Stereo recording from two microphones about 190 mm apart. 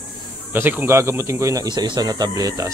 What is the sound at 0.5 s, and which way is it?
Speech, 10° right (ahead or behind).